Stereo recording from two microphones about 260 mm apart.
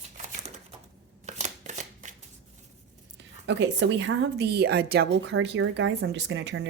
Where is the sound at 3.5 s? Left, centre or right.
Right.